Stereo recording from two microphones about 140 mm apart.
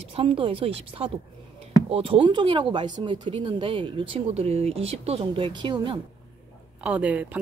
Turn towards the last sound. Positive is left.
turn(degrees=-10)  # may be behind; listen again after turning